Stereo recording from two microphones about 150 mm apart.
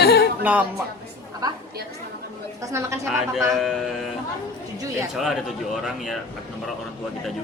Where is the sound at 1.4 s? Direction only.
25° right (ahead or behind).